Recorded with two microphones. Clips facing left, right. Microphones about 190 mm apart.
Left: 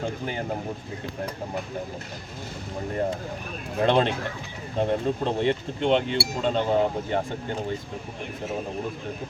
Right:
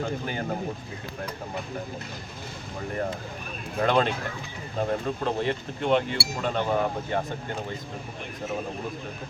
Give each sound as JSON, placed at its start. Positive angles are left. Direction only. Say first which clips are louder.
{"t": 3.8, "sound": "speech", "louder": "left 2 dB", "side_deg": 25}